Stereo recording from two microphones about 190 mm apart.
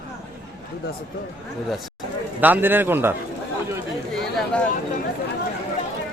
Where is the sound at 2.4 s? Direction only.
10° right (ahead or behind).